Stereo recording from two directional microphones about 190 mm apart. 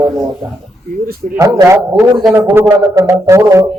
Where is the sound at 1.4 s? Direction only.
15° right (ahead or behind).